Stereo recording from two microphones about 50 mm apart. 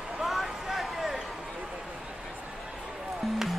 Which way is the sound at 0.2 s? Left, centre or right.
Centre.